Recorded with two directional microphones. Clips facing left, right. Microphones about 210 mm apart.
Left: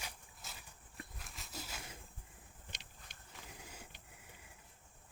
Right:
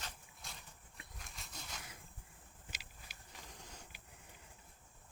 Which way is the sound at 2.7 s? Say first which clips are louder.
Right 1 dB; 5° right (ahead or behind).